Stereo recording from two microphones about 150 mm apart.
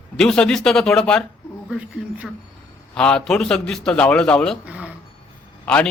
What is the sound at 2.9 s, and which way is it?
A man's voice, 5° left (ahead or behind).